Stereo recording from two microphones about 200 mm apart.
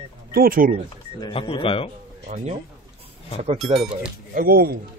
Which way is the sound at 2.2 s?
35° right (ahead or behind).